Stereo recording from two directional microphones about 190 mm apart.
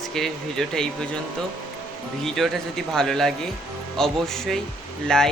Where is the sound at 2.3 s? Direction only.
Centre (ahead or behind).